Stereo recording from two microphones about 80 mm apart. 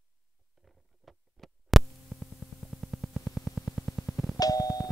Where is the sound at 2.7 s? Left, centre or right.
Centre.